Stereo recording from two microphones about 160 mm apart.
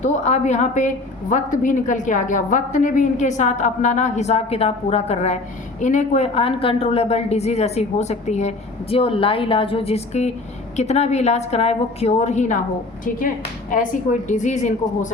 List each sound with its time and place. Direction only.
0.0 s a woman's voice: 45° left (ahead or behind)
13.1 s a woman's voice: 60° left (ahead or behind)